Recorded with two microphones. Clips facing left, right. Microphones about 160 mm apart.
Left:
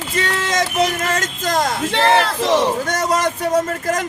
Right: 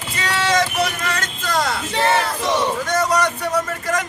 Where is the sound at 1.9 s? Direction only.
90° left.